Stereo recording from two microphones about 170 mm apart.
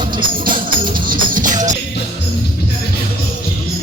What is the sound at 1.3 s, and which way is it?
Music, 50° right (ahead or behind).